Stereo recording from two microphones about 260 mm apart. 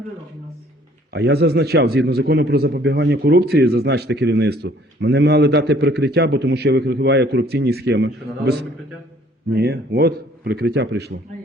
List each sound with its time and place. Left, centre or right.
1.1 s a man's voice: right